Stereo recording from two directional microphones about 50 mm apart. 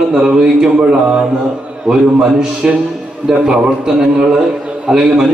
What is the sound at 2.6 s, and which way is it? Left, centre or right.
A man's voice, centre.